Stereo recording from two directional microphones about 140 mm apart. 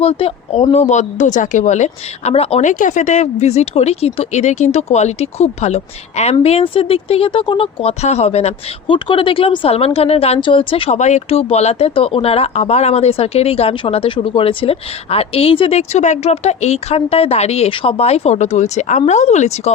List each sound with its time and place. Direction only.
0.0 s speech: 45° left (ahead or behind)
2.6 s speech: 65° left (ahead or behind); by 10.9 s 40° left (ahead or behind)
10.9 s speech: 55° left (ahead or behind)